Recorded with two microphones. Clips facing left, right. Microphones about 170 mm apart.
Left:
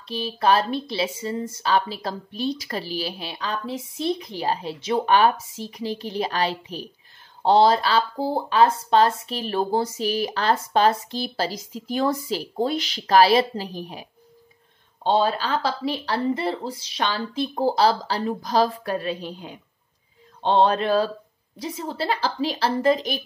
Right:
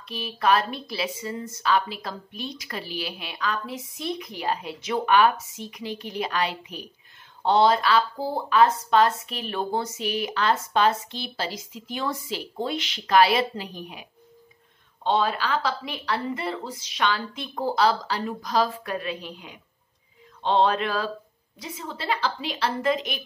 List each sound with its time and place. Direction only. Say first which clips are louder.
0.0 s a woman's voice: left 3 dB; 30° left (ahead or behind)
15.0 s a woman's voice: left 3 dB; 30° left (ahead or behind)